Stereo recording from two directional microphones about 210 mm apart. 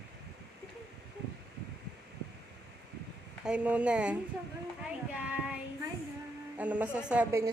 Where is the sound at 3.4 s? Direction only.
5° right (ahead or behind).